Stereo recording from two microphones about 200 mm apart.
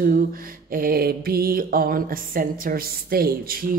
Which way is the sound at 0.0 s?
45° right (ahead or behind).